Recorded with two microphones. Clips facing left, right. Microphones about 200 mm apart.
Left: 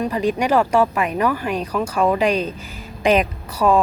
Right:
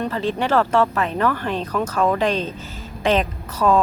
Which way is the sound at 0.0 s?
15° left (ahead or behind).